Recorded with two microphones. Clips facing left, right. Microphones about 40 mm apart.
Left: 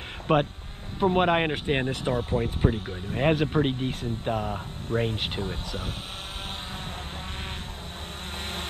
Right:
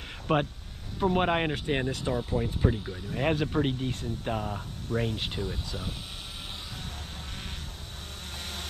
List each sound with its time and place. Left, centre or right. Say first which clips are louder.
0.3 s speech: left 4 dB; left
8.4 s vehicle: left 5 dB; left